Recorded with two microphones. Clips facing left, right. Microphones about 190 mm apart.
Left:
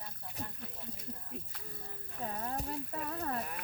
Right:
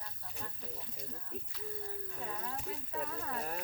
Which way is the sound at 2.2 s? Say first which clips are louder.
Left 6 dB; 40° left (ahead or behind).